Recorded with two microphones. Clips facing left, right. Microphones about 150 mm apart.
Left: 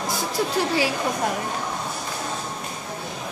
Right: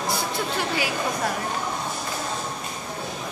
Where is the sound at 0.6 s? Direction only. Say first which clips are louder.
Left 6 dB; 30° left (ahead or behind).